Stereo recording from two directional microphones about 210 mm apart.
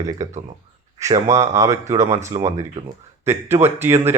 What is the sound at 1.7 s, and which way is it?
Speech, 35° right (ahead or behind).